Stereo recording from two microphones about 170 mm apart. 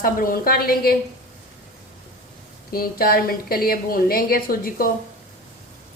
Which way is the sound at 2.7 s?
60° left (ahead or behind).